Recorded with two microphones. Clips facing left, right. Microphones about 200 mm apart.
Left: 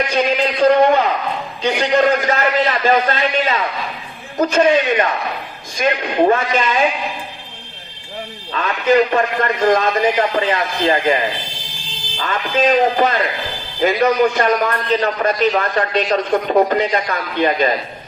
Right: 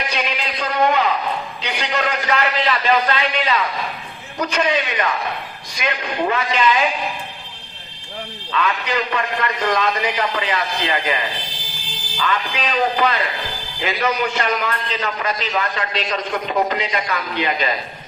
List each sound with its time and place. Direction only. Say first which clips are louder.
0.3 s a sound: left 12 dB; 45° left (ahead or behind)
1.9 s a man's voice: left 6 dB; 40° left (ahead or behind)
8.5 s a man's voice: left 7 dB; 45° left (ahead or behind)